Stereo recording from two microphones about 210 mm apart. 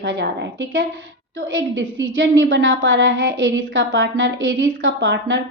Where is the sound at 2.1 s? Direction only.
65° right (ahead or behind).